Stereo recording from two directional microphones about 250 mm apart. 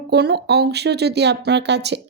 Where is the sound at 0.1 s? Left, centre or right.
Right.